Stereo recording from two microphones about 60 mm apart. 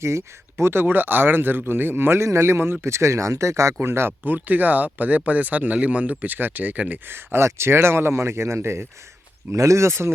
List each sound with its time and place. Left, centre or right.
0.0 s speech: right
3.8 s speech: right
4.2 s speech: right
7.1 s speech: right